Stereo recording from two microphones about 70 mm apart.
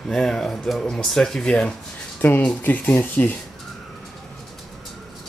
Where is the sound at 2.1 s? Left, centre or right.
Left.